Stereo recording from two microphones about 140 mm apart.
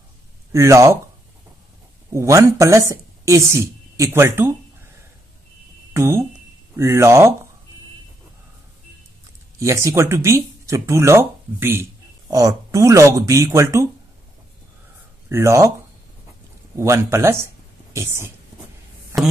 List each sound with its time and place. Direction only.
0.5 s a woman's voice: 20° right (ahead or behind)
2.1 s a woman's voice: 20° right (ahead or behind)
5.9 s a woman's voice: 20° right (ahead or behind)
9.6 s speech: 20° right (ahead or behind)
15.2 s speech: 20° right (ahead or behind)
16.7 s a woman's voice: 20° right (ahead or behind)
19.1 s a sound: centre (ahead or behind)